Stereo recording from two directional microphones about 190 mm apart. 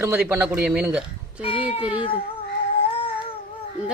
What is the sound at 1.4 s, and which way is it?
Speech, 30° left (ahead or behind).